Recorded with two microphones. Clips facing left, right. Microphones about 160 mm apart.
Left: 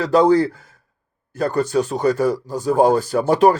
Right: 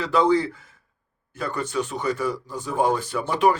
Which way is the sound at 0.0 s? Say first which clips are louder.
Left 6 dB; 40° left (ahead or behind).